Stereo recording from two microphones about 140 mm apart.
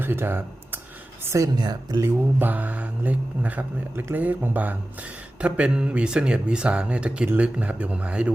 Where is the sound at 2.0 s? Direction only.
15° right (ahead or behind).